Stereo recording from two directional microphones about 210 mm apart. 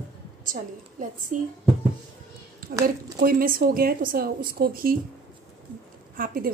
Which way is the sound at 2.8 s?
45° right (ahead or behind).